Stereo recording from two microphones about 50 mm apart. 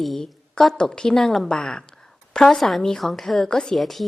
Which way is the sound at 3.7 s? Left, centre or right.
Centre.